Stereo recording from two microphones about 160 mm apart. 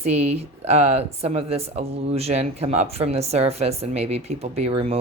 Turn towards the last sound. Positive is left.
turn(degrees=-35)  # may be behind; listen again after turning